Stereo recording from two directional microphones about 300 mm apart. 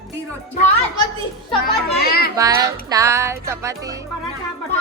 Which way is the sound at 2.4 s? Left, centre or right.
Centre.